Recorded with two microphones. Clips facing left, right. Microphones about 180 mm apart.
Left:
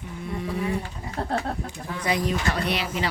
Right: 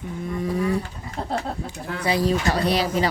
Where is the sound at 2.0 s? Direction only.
30° right (ahead or behind).